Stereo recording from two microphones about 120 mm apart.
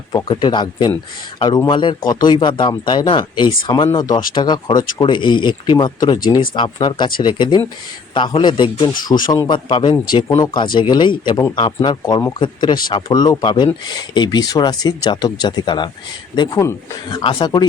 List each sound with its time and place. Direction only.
0.3 s speech: 40° left (ahead or behind)